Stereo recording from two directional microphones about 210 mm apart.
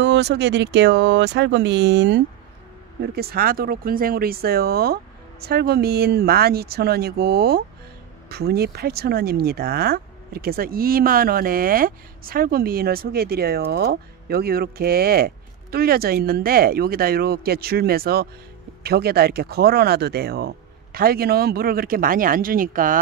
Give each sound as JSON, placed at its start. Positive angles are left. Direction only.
{"t": 0.0, "sound": "speech", "side_deg": -55}